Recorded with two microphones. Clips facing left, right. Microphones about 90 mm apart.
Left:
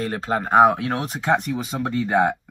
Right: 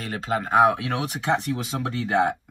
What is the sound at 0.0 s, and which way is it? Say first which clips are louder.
Speech: left 3 dB; 40° left (ahead or behind).